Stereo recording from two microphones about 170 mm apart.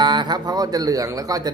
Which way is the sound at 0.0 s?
25° right (ahead or behind).